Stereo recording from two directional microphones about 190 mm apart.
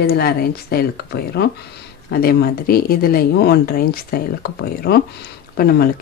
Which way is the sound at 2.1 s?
55° left (ahead or behind).